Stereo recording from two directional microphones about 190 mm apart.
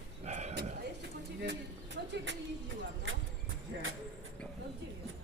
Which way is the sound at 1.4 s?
60° right (ahead or behind).